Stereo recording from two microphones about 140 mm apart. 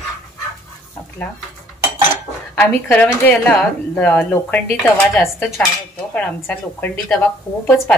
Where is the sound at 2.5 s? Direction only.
10° left (ahead or behind).